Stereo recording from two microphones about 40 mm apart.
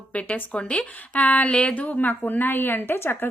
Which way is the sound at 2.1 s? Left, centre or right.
Left.